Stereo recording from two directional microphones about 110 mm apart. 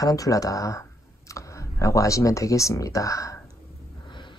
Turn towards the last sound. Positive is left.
turn(degrees=30)  # may be behind; listen again after turning